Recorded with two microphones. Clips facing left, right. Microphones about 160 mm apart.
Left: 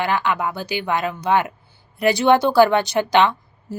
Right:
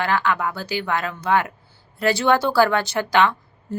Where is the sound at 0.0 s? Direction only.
20° left (ahead or behind).